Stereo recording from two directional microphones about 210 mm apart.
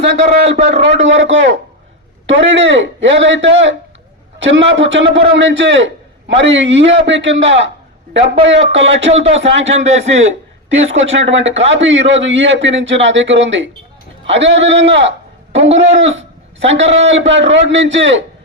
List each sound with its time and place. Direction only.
0.0 s a man's voice: 30° right (ahead or behind)
0.9 s a man's voice: 60° right (ahead or behind)
10.8 s a man's voice: 65° right (ahead or behind)